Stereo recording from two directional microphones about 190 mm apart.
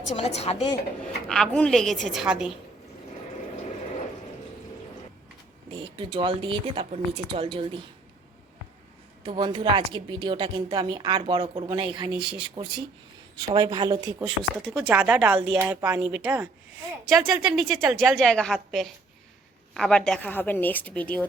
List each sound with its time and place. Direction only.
0.2 s a woman's voice: 35° left (ahead or behind)
1.3 s a woman's voice: 5° left (ahead or behind)
5.7 s a woman's voice: 25° right (ahead or behind)
9.2 s a woman's voice: 25° right (ahead or behind)
12.1 s a woman's voice: 5° right (ahead or behind)
12.4 s a woman's voice: 25° right (ahead or behind)
14.3 s a woman's voice: centre (ahead or behind)